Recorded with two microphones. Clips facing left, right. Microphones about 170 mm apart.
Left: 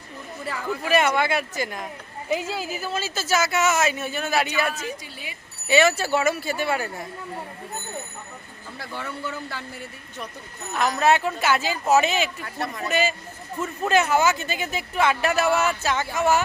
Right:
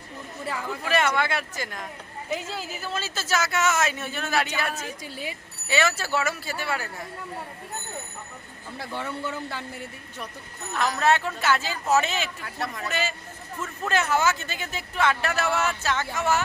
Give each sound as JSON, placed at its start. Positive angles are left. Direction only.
{"t": 0.5, "sound": "speech", "side_deg": -20}
{"t": 0.9, "sound": "speech", "side_deg": 15}
{"t": 4.8, "sound": "a woman's voice", "side_deg": -40}
{"t": 5.6, "sound": "speech", "side_deg": 20}
{"t": 9.0, "sound": "speech", "side_deg": -25}
{"t": 10.8, "sound": "speech", "side_deg": 10}
{"t": 12.5, "sound": "speech", "side_deg": 0}
{"t": 12.9, "sound": "speech", "side_deg": 15}